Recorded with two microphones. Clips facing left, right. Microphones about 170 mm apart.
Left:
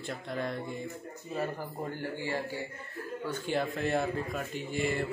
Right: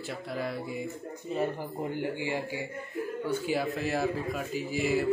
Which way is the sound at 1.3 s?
20° right (ahead or behind).